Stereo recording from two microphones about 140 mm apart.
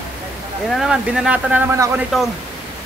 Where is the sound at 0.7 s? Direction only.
5° right (ahead or behind).